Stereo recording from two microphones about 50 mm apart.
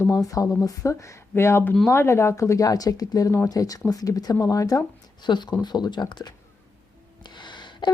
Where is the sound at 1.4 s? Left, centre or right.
Left.